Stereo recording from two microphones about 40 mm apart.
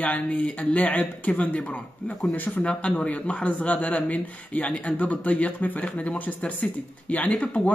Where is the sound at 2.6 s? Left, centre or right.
Left.